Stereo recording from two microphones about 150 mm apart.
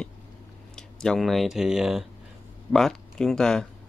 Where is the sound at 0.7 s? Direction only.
5° left (ahead or behind).